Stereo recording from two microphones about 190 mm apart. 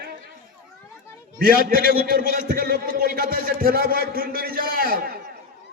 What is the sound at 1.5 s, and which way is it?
Speech, 50° left (ahead or behind).